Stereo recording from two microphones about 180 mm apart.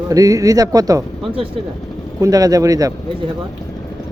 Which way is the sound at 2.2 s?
20° right (ahead or behind).